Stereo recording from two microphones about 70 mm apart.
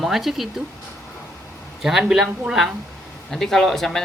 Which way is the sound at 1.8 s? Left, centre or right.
Centre.